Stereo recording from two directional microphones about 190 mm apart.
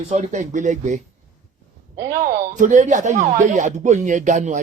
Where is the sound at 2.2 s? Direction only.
45° right (ahead or behind).